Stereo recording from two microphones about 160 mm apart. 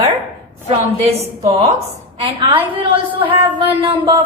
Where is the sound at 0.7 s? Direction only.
40° right (ahead or behind).